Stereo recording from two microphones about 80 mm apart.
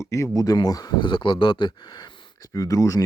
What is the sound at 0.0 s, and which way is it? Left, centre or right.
Speech, left.